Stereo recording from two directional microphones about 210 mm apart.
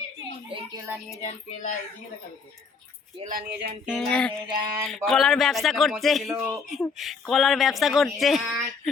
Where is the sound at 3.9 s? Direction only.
5° left (ahead or behind).